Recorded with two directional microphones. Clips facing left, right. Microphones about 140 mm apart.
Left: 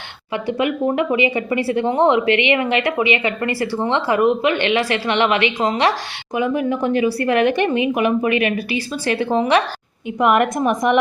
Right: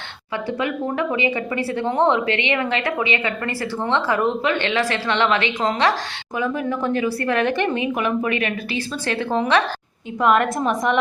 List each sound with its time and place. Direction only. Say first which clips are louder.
0.4 s a woman's voice: left 5 dB; 15° left (ahead or behind)